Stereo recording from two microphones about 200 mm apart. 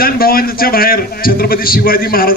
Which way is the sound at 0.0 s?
50° left (ahead or behind).